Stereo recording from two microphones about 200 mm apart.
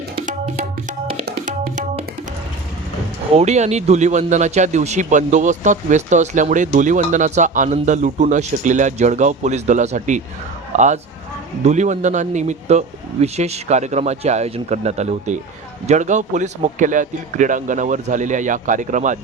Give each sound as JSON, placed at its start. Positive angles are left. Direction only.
{"t": 0.2, "sound": "tabla", "side_deg": -40}
{"t": 1.2, "sound": "music", "side_deg": -45}
{"t": 3.3, "sound": "a man's voice", "side_deg": -35}